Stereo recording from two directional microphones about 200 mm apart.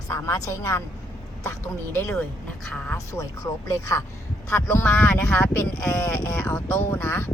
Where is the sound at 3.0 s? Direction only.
15° left (ahead or behind).